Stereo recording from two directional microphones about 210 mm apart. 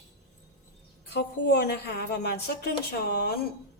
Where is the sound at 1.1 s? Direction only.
50° left (ahead or behind).